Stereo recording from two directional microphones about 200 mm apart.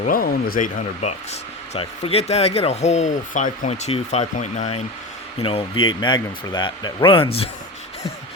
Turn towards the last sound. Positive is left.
turn(degrees=30)  # may be behind; listen again after turning